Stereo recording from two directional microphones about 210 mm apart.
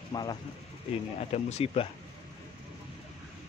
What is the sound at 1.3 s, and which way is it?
Speech, 30° left (ahead or behind).